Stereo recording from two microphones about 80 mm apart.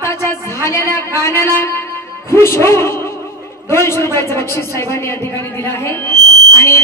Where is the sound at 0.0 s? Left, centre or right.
Left.